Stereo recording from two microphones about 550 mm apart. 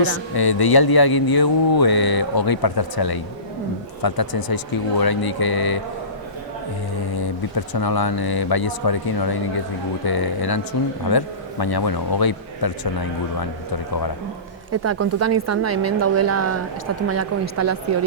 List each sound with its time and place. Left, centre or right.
0.3 s mantra: left
7.7 s mantra: left
14.7 s speech: right